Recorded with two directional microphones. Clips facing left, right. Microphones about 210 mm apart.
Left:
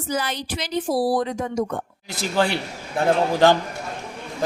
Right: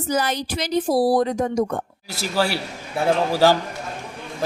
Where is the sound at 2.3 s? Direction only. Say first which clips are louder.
Left 1 dB; 5° right (ahead or behind).